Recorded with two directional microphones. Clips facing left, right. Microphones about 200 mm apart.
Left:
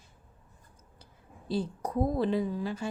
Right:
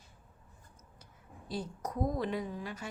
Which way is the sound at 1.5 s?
30° left (ahead or behind).